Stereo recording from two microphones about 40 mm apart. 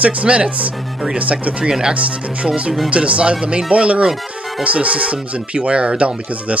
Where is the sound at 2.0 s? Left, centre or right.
Right.